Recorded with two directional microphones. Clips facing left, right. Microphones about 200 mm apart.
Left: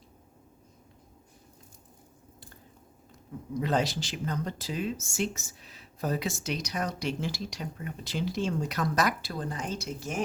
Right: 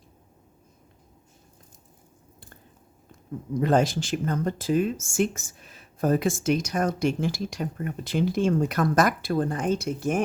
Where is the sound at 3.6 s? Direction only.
50° right (ahead or behind).